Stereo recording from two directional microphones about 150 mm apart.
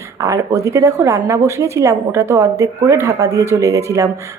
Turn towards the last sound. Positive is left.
turn(degrees=-20)  # may be behind; listen again after turning